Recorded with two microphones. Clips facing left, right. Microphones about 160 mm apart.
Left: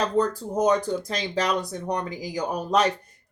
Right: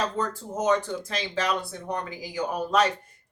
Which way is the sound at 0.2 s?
40° left (ahead or behind).